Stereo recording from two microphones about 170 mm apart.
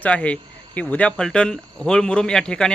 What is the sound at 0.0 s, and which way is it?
Speech, 5° left (ahead or behind).